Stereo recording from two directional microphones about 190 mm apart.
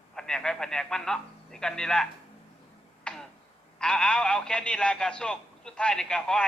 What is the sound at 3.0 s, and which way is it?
Tick-tock, 5° left (ahead or behind).